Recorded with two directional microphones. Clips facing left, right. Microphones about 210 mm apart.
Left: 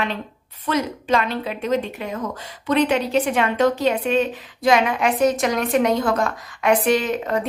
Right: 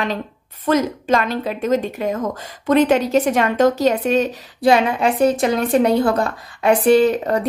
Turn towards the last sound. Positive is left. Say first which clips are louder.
# right 7 dB
turn(degrees=-40)  # may be behind; listen again after turning